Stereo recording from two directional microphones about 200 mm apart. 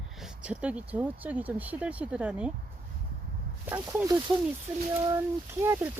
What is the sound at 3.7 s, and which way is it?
Speech, 15° right (ahead or behind).